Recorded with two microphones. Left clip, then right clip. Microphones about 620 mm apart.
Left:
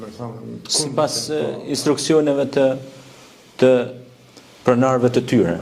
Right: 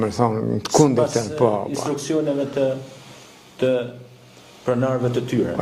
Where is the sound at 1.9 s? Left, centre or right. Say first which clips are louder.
Left 7 dB; left.